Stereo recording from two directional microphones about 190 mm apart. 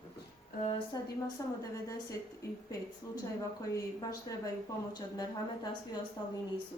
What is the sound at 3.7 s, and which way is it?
Speech, 20° left (ahead or behind).